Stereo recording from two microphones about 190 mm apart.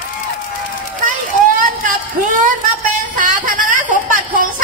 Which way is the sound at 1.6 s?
45° right (ahead or behind).